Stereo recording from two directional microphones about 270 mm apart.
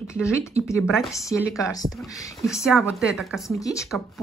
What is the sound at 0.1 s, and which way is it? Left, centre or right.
Speech, centre.